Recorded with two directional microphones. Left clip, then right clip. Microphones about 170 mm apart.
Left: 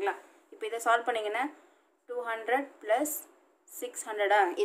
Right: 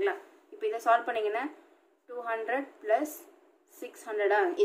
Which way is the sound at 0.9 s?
45° left (ahead or behind).